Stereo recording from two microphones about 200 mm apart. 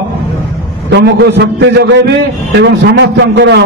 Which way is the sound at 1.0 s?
55° right (ahead or behind).